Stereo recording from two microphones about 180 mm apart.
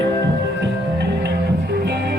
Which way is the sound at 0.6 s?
70° right (ahead or behind).